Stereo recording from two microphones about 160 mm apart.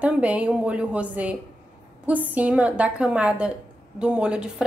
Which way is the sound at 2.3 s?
10° right (ahead or behind).